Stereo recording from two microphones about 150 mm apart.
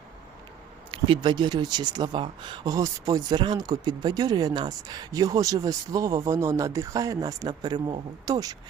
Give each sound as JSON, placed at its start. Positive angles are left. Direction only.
{"t": 0.9, "sound": "speech", "side_deg": -35}